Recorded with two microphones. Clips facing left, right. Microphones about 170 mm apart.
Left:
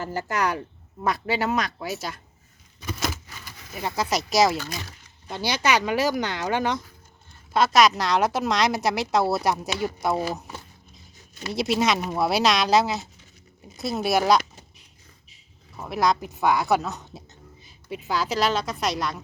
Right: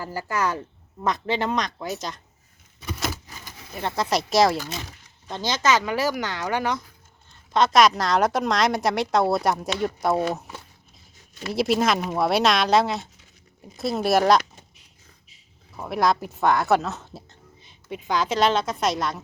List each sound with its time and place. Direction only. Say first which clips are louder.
0.0 s speech: even; 20° left (ahead or behind)
3.7 s a woman's voice: right 1 dB; 5° left (ahead or behind)
5.3 s speech: right 1 dB; 10° left (ahead or behind)
7.5 s a woman's voice: right 1 dB; 5° left (ahead or behind)
15.7 s a woman's voice: right 1 dB; centre (ahead or behind)